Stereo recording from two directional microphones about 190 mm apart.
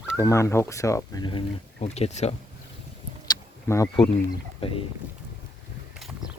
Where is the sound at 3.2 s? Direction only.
20° left (ahead or behind).